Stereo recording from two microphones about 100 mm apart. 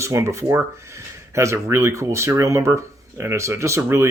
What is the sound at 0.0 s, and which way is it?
Speech, 30° right (ahead or behind).